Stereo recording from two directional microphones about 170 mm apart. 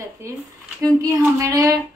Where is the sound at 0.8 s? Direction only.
15° right (ahead or behind).